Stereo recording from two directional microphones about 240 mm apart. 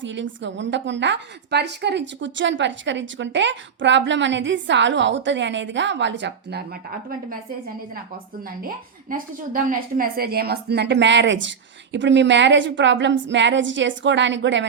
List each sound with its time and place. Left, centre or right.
0.0 s a woman's voice: right
8.6 s a woman's voice: right